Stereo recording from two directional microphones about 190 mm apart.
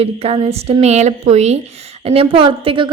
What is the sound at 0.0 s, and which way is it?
A woman's voice, 30° right (ahead or behind).